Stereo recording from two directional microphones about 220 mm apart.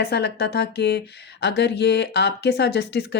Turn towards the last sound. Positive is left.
turn(degrees=50)  # may be behind; listen again after turning